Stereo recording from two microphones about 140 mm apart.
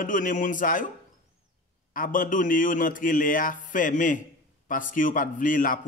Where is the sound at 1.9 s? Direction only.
75° left (ahead or behind).